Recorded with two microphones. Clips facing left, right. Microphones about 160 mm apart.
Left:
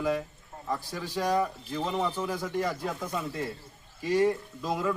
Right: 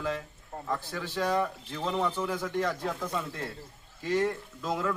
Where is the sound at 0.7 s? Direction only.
10° left (ahead or behind).